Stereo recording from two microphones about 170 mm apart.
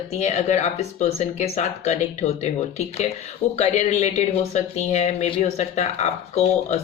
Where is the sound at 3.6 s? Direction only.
40° left (ahead or behind).